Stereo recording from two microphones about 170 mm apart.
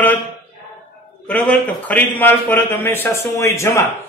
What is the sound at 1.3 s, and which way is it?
A man's voice, 10° left (ahead or behind).